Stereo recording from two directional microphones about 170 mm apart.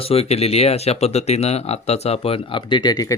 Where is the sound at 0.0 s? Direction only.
35° left (ahead or behind).